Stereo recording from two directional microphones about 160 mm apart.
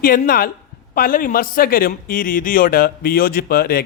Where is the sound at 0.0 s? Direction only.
60° left (ahead or behind).